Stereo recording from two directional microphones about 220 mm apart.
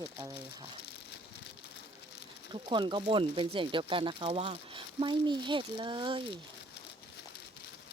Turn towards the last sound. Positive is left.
turn(degrees=-20)  # may be behind; listen again after turning